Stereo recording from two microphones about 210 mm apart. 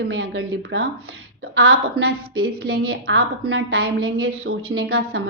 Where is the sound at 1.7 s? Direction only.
50° right (ahead or behind).